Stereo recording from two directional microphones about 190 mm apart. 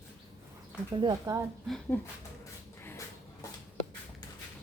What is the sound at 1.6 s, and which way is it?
Speech, centre (ahead or behind).